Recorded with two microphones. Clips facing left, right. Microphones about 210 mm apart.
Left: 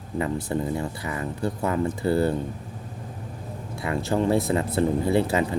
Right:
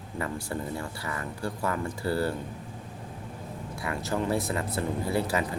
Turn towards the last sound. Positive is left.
turn(degrees=25)  # may be behind; listen again after turning